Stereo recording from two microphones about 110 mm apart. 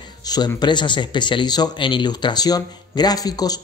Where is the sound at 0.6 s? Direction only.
45° left (ahead or behind).